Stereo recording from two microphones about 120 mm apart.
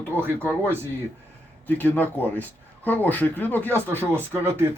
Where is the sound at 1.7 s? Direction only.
15° left (ahead or behind).